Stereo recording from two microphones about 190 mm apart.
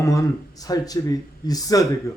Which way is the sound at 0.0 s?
15° left (ahead or behind).